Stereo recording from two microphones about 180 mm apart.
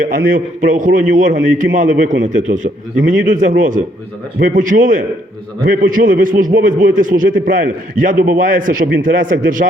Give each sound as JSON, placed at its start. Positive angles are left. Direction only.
{"t": 0.0, "sound": "a man's voice", "side_deg": -50}